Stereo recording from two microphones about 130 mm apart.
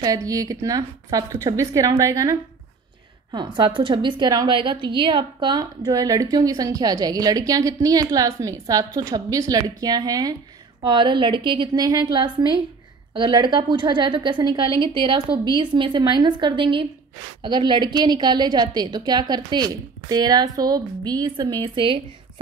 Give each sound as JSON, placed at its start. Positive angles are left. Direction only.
{"t": 0.0, "sound": "a woman's voice", "side_deg": -30}